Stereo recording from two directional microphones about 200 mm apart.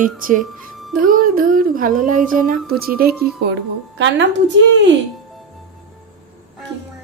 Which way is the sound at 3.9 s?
65° right (ahead or behind).